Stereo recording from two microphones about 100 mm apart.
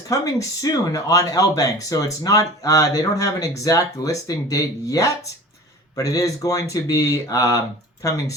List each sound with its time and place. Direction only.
0.1 s speech: 35° left (ahead or behind)